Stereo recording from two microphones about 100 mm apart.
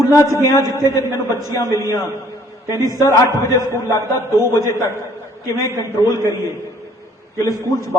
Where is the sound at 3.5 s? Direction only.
30° left (ahead or behind).